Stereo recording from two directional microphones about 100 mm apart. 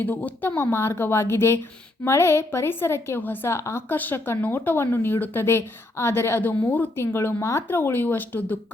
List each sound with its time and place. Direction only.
0.0 s a woman's voice: 15° left (ahead or behind)